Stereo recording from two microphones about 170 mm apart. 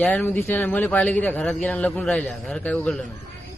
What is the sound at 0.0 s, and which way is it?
A man's voice, 10° left (ahead or behind).